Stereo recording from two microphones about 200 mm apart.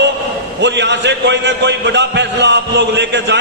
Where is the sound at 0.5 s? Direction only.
60° right (ahead or behind).